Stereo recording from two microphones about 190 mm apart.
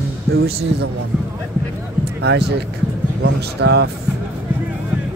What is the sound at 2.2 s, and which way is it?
Speech, 60° right (ahead or behind).